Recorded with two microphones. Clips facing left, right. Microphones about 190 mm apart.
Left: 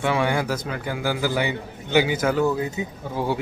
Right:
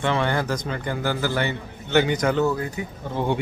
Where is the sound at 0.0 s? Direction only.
10° left (ahead or behind).